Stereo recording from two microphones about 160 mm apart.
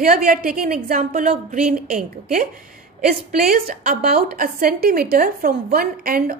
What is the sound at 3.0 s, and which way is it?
A woman's voice, 65° right (ahead or behind).